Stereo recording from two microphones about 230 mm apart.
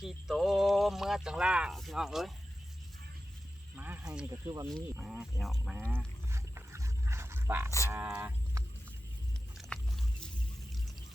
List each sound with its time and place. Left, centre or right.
0.0 s speech: centre
3.8 s speech: centre
4.9 s speech: centre
6.3 s wild animals: centre
7.9 s a sound: centre
9.6 s biting: centre